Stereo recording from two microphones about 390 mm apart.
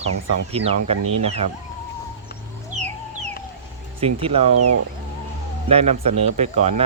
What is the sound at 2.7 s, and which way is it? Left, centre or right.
Chicken, centre.